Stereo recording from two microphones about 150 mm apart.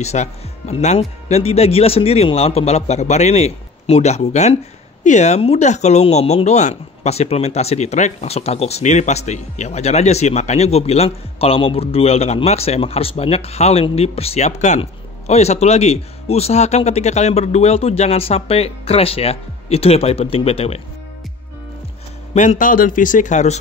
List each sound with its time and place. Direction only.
0.0 s speech: 45° left (ahead or behind)
22.3 s speech: 55° left (ahead or behind)